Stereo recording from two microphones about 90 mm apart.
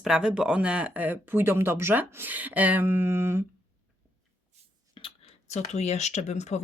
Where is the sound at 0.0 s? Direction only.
10° right (ahead or behind); by 3.4 s 25° right (ahead or behind).